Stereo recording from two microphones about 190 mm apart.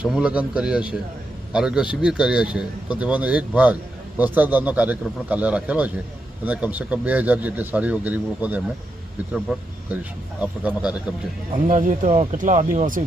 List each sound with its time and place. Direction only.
0.0 s a man's voice: 5° right (ahead or behind)
11.5 s speech: 40° right (ahead or behind)